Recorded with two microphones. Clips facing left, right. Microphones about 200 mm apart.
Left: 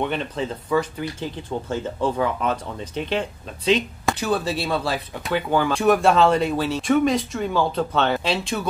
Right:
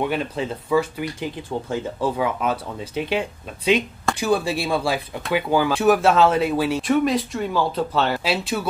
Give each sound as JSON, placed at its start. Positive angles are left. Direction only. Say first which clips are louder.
{"t": 0.0, "sound": "speech", "louder": "right 1 dB", "side_deg": -5}